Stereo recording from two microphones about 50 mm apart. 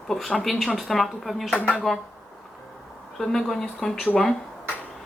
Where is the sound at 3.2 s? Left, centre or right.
Centre.